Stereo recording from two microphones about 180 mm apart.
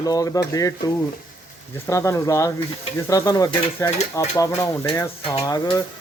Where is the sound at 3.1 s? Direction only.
20° left (ahead or behind).